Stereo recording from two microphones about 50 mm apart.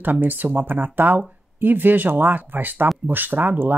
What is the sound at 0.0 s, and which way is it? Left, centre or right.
Speech, right.